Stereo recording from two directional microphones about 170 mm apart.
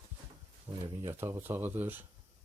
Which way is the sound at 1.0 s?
15° right (ahead or behind).